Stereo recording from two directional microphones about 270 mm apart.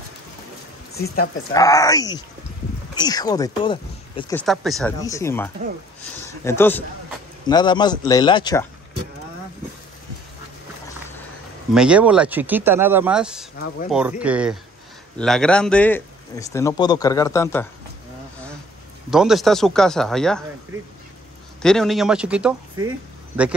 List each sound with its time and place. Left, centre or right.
1.5 s speech: centre
4.4 s speech: centre
5.0 s speech: centre
11.7 s speech: centre
19.0 s speech: centre
21.6 s speech: centre